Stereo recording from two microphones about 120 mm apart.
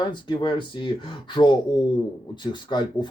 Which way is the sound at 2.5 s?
40° left (ahead or behind).